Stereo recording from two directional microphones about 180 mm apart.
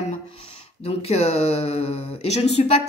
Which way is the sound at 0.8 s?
35° left (ahead or behind).